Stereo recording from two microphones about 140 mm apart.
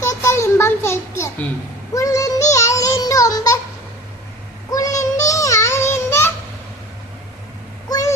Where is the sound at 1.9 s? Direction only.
25° left (ahead or behind).